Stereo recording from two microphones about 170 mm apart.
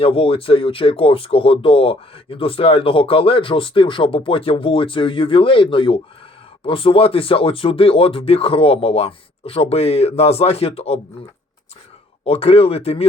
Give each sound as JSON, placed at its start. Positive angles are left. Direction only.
{"t": 0.0, "sound": "speech", "side_deg": 35}
{"t": 12.2, "sound": "speech", "side_deg": 35}